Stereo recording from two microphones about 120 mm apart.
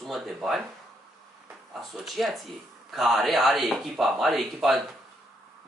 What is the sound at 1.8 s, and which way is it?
A man's voice, centre (ahead or behind).